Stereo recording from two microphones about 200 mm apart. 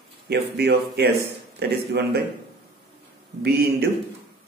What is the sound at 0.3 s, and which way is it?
A man's voice, 55° right (ahead or behind).